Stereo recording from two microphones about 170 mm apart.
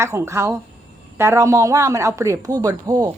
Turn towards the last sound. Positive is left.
turn(degrees=-15)  # may be behind; listen again after turning